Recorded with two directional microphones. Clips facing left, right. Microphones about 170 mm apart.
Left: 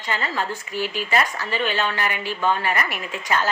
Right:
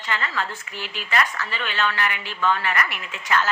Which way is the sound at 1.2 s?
35° left (ahead or behind).